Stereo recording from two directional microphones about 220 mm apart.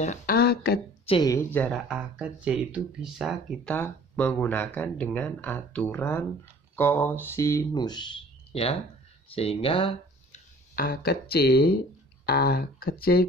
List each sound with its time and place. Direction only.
0.0 s speech: 35° left (ahead or behind)
1.0 s speech: 20° left (ahead or behind)
10.8 s speech: 40° left (ahead or behind)